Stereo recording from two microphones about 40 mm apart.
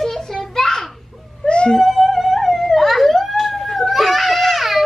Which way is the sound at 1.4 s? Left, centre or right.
Left.